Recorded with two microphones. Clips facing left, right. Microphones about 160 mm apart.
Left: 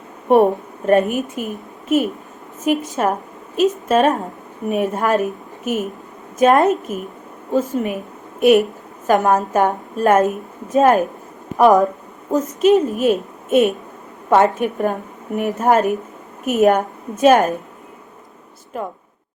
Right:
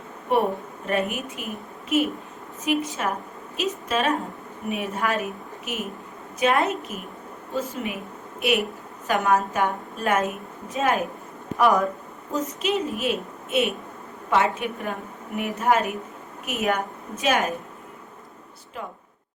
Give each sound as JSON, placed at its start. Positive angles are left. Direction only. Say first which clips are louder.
{"t": 0.3, "sound": "a woman's voice", "louder": "left 9 dB", "side_deg": 45}
{"t": 2.6, "sound": "a woman's voice", "louder": "left 7 dB", "side_deg": 45}
{"t": 18.7, "sound": "a woman's voice", "louder": "left 9 dB", "side_deg": 45}